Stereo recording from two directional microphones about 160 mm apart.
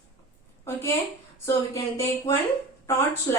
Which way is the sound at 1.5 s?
20° left (ahead or behind).